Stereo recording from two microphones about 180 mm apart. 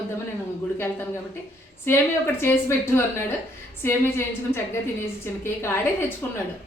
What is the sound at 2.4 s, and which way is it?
A man's voice, 15° left (ahead or behind).